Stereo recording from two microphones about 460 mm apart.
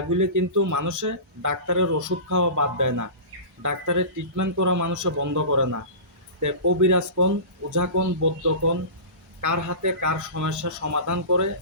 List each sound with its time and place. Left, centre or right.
0.1 s speech: right